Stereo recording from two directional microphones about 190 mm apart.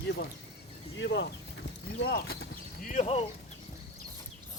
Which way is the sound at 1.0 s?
65° left (ahead or behind).